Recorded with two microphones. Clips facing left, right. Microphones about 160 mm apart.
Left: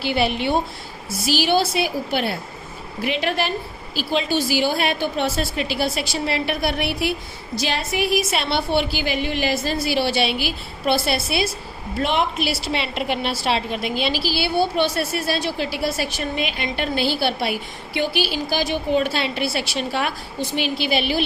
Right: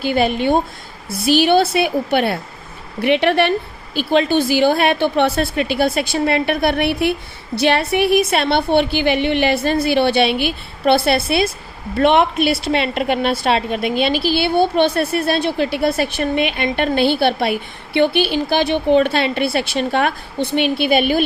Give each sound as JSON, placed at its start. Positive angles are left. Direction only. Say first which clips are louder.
{"t": 0.0, "sound": "a woman's voice", "louder": "right 4 dB", "side_deg": -50}